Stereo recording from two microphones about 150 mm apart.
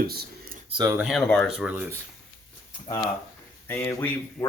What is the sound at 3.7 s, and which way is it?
Speech, 15° left (ahead or behind).